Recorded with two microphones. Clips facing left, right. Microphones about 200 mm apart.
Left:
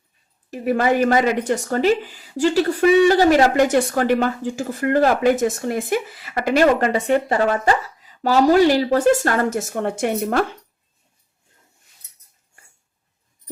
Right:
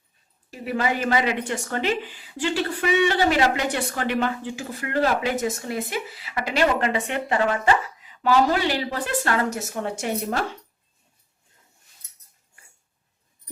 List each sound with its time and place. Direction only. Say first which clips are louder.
0.5 s a woman's voice: left 7 dB; 50° left (ahead or behind)